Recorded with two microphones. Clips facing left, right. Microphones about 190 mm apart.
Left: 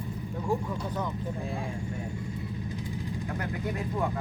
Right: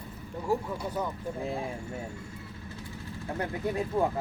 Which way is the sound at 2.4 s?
15° left (ahead or behind).